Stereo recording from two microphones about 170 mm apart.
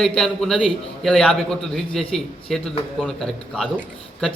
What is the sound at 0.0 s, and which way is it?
A man's voice, 5° left (ahead or behind).